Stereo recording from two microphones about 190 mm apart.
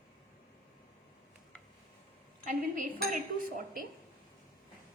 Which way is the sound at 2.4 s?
45° right (ahead or behind).